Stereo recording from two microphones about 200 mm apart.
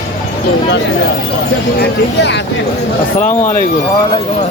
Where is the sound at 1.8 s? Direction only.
60° left (ahead or behind).